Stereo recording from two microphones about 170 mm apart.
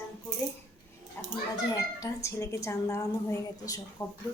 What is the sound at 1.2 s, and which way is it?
A woman's voice, 15° left (ahead or behind).